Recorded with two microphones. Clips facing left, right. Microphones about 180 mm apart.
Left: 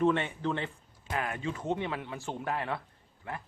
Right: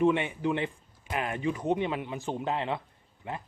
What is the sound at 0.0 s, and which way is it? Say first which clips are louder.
Speech: right 2 dB; 15° right (ahead or behind).